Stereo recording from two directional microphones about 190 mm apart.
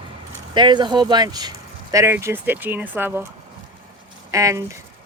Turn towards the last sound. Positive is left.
turn(degrees=-15)  # may be behind; listen again after turning